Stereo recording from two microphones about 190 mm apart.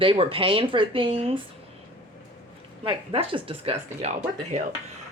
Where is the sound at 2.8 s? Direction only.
30° right (ahead or behind).